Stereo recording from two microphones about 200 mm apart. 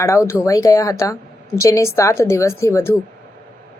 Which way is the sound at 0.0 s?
15° left (ahead or behind).